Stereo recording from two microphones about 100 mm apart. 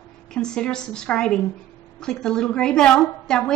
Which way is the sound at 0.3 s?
5° left (ahead or behind).